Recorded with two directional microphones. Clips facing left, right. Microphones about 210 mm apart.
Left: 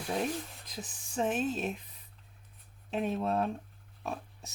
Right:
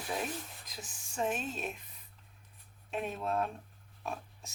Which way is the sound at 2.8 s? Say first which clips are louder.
Left 4 dB; 35° left (ahead or behind).